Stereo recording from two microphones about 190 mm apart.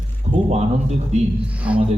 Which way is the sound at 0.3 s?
35° right (ahead or behind).